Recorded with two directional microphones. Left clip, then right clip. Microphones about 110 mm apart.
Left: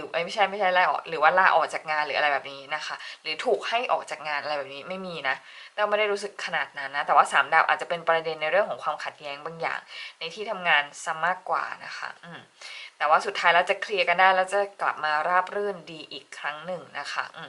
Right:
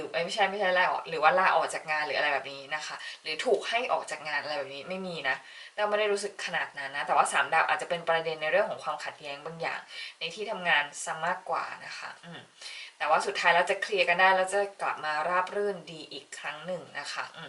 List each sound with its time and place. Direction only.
0.1 s speech: 20° left (ahead or behind)
13.0 s speech: 20° left (ahead or behind)